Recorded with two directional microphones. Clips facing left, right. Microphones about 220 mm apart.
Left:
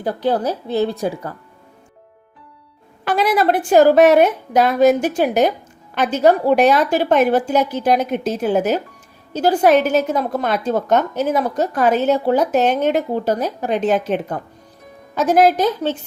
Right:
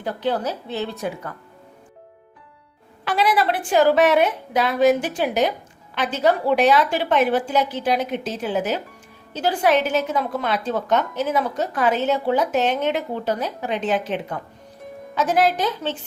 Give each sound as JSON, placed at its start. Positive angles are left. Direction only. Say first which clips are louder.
{"t": 0.0, "sound": "a woman's voice", "louder": "left 5 dB", "side_deg": 40}
{"t": 3.0, "sound": "a woman's voice", "louder": "left 3 dB", "side_deg": 45}